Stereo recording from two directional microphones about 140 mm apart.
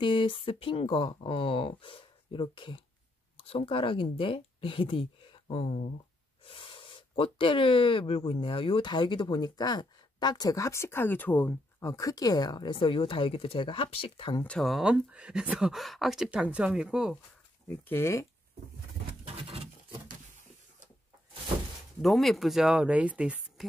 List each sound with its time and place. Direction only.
0.0 s speech: 35° left (ahead or behind)
6.4 s gasp: 40° left (ahead or behind)
7.3 s speech: 40° left (ahead or behind); by 11.9 s 15° left (ahead or behind)
11.9 s speech: 25° left (ahead or behind)
14.4 s speech: 5° left (ahead or behind)
17.6 s speech: 15° left (ahead or behind)
19.2 s a sound: 45° right (ahead or behind)
22.0 s speech: centre (ahead or behind)